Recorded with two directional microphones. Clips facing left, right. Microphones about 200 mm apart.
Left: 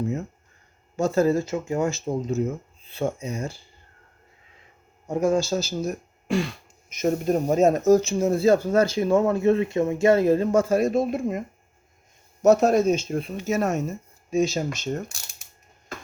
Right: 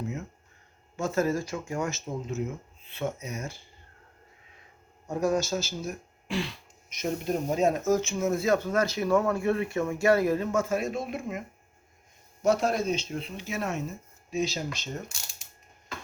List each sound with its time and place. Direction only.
0.9 s speech: 35° left (ahead or behind)
2.0 s speech: 40° left (ahead or behind)
5.0 s speech: 20° left (ahead or behind); by 14.8 s 50° left (ahead or behind)